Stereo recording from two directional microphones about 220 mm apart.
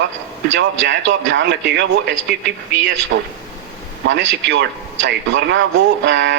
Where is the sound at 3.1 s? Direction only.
50° right (ahead or behind).